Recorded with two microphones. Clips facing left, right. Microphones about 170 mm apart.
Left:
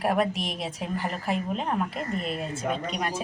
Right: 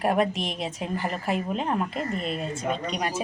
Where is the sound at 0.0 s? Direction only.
Centre (ahead or behind).